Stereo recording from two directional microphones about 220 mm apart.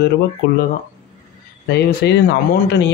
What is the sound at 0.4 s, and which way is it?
Speech, 50° left (ahead or behind).